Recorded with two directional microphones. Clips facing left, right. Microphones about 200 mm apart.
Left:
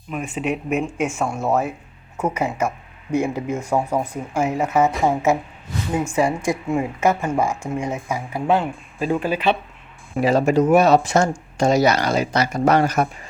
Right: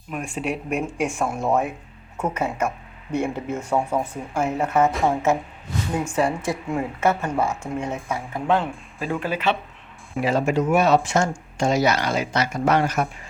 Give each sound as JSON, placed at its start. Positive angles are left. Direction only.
{"t": 0.1, "sound": "speech", "side_deg": 5}
{"t": 4.4, "sound": "speech", "side_deg": 10}
{"t": 10.2, "sound": "speech", "side_deg": 40}